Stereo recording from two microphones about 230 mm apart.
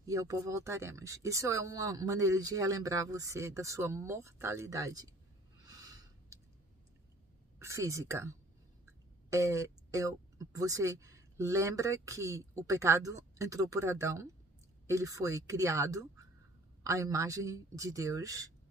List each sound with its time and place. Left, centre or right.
0.0 s speech: centre
5.7 s a sound: centre
7.5 s speech: centre